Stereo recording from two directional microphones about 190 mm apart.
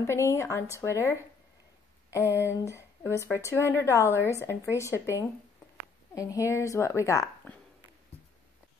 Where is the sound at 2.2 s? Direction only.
10° right (ahead or behind).